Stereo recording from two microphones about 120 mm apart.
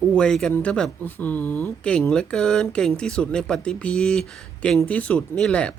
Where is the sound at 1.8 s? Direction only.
5° left (ahead or behind).